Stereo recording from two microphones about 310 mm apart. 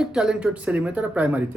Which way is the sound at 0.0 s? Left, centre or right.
Centre.